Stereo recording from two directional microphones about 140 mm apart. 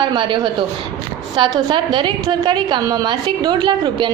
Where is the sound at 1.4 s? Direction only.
35° right (ahead or behind).